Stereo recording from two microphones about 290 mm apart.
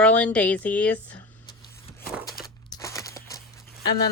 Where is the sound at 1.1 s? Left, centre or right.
Centre.